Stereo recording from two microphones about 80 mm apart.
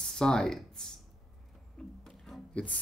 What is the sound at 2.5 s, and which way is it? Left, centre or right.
Speech, centre.